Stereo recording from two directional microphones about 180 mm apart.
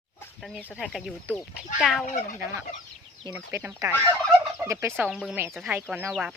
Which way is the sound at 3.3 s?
10° right (ahead or behind).